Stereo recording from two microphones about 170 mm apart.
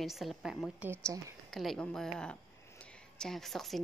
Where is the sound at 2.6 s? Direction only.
5° left (ahead or behind).